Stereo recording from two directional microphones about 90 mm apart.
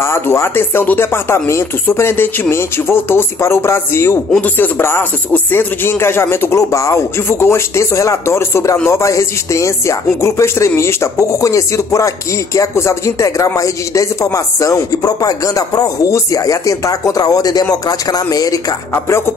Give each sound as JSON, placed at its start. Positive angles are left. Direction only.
{"t": 0.0, "sound": "speech", "side_deg": 30}
{"t": 18.9, "sound": "speech", "side_deg": 30}